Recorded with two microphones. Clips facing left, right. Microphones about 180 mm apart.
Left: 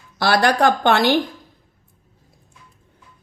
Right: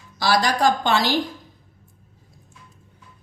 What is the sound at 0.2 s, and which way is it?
Speech, 60° left (ahead or behind).